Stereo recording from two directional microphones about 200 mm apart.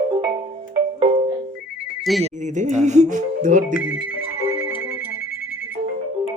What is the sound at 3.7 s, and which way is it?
Speech, 10° right (ahead or behind).